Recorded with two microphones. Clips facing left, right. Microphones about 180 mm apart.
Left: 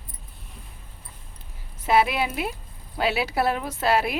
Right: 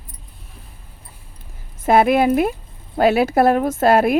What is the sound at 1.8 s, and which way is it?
A woman's voice, 50° right (ahead or behind).